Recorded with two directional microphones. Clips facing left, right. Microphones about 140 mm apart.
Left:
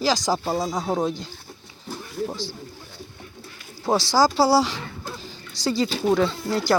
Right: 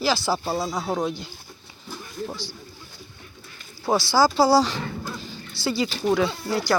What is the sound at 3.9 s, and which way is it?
Speech, 10° right (ahead or behind).